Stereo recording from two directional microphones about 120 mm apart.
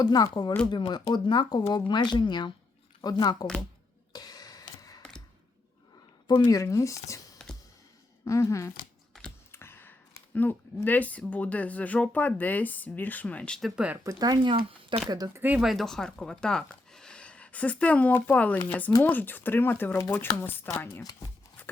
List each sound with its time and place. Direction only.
0.0 s speech: 35° left (ahead or behind)
4.1 s a sound: 35° left (ahead or behind)
6.2 s speech: 35° left (ahead or behind)
7.4 s music: 5° left (ahead or behind)
8.2 s speech: 25° left (ahead or behind); by 14.0 s 10° right (ahead or behind)
14.0 s speech: 30° right (ahead or behind)
14.5 s speech: 50° right (ahead or behind)
15.3 s speech: 15° right (ahead or behind)
15.6 s speech: centre (ahead or behind); by 21.0 s 20° left (ahead or behind)